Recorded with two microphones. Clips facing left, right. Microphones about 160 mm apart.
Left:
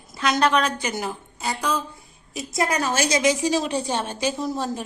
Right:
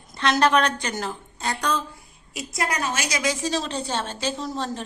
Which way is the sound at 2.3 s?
20° left (ahead or behind).